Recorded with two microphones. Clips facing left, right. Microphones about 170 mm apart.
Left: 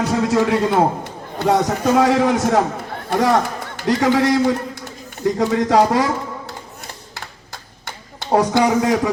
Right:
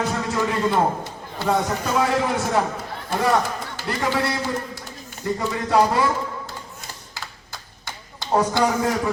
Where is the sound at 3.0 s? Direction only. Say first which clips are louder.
Left 4 dB; 75° left (ahead or behind); by 6.0 s 90° left.